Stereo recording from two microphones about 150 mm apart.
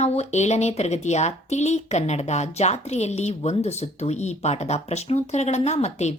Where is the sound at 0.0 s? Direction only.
50° left (ahead or behind).